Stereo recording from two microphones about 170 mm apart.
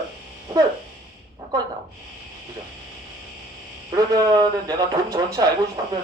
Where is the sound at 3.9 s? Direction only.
20° right (ahead or behind).